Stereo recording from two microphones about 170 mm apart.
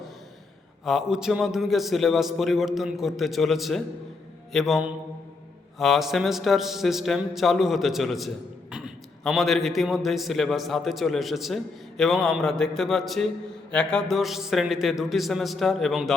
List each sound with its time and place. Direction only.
0.9 s a man's voice: centre (ahead or behind)